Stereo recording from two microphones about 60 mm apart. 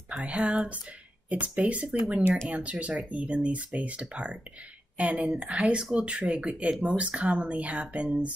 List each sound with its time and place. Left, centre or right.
0.2 s a woman's voice: centre
5.8 s a woman's voice: centre